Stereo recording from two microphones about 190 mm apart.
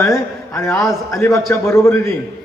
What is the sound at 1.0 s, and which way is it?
A man's voice, 15° left (ahead or behind).